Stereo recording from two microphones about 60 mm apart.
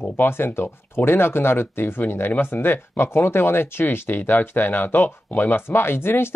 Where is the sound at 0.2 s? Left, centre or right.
Left.